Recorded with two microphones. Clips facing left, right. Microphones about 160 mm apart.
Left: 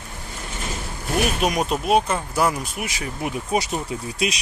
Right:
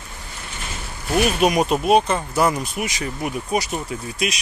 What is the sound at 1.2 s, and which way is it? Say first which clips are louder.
Speech: right 4 dB; 5° right (ahead or behind).